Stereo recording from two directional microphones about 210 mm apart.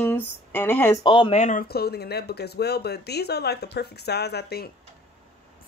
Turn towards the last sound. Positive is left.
turn(degrees=50)  # may be behind; listen again after turning